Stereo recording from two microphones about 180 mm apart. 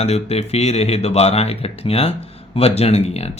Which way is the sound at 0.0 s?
35° left (ahead or behind).